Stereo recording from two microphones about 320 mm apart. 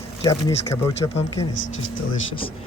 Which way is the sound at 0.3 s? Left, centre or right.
Centre.